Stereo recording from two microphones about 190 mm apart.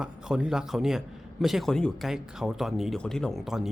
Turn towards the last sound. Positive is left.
turn(degrees=0)  # may be behind; listen again after turning